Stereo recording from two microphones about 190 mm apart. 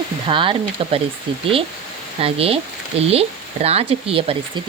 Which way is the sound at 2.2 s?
30° right (ahead or behind).